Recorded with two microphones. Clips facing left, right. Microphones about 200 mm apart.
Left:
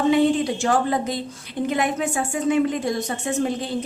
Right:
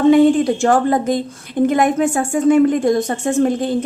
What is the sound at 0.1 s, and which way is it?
A woman's voice, 50° right (ahead or behind).